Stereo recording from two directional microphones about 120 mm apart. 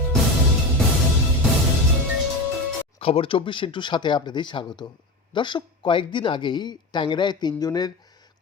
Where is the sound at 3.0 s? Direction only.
50° left (ahead or behind).